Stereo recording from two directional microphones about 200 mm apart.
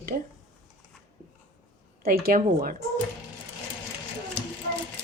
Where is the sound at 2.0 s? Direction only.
50° right (ahead or behind).